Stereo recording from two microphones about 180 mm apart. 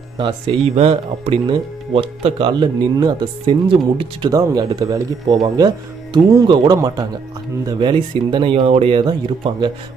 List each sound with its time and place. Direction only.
0.2 s speech: 25° right (ahead or behind)